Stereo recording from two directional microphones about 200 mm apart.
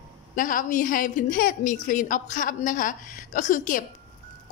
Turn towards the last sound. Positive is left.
turn(degrees=40)  # may be behind; listen again after turning